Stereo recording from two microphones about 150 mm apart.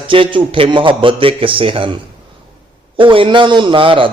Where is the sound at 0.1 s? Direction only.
35° right (ahead or behind).